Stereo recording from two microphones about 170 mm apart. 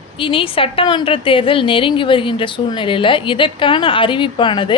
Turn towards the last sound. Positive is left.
turn(degrees=30)  # may be behind; listen again after turning